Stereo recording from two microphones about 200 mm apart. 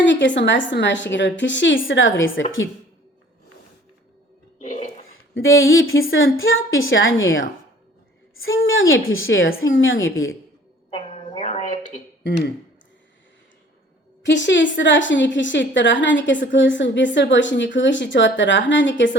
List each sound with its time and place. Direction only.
0.0 s a woman's voice: 65° left (ahead or behind)
4.6 s dishes: 40° left (ahead or behind)
5.3 s a woman's voice: 80° left
8.4 s a woman's voice: 80° left
10.9 s a sound: 30° left (ahead or behind)
14.3 s a woman's voice: 65° left (ahead or behind)